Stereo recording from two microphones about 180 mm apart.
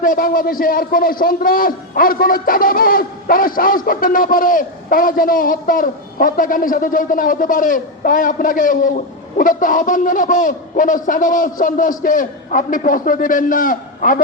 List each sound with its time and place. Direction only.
0.0 s a man's voice: 50° left (ahead or behind)